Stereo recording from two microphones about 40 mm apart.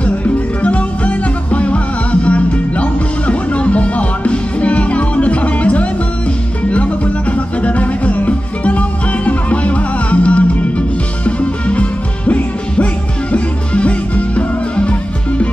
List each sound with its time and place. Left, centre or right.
0.0 s music: left